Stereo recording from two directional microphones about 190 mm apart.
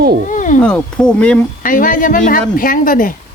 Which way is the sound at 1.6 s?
45° left (ahead or behind).